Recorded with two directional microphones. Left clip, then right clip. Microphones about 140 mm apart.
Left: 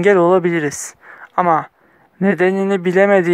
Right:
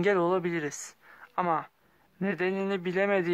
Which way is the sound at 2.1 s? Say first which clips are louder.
Left 14 dB; 40° left (ahead or behind).